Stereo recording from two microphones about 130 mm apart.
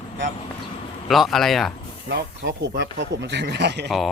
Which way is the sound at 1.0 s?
Centre (ahead or behind).